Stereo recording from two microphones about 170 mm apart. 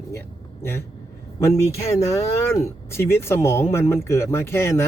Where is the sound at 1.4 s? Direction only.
15° left (ahead or behind).